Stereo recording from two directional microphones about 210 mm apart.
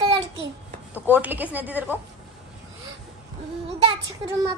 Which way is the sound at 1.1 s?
10° right (ahead or behind).